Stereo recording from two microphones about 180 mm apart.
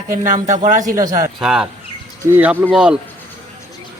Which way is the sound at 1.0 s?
20° right (ahead or behind).